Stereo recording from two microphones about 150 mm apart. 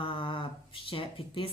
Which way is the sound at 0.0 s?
35° left (ahead or behind).